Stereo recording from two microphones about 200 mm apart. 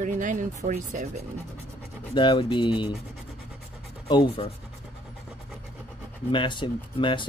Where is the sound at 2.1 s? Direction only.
25° left (ahead or behind).